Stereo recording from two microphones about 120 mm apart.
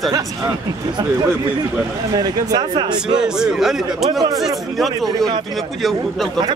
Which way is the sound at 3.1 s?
5° right (ahead or behind).